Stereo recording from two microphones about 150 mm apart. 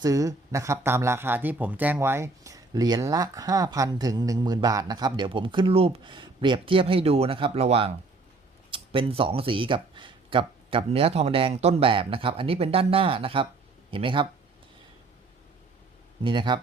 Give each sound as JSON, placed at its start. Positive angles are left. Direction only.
{"t": 0.0, "sound": "speech", "side_deg": -20}
{"t": 16.2, "sound": "speech", "side_deg": -30}